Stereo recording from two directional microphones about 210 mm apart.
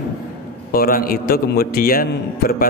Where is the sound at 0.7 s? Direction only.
45° left (ahead or behind).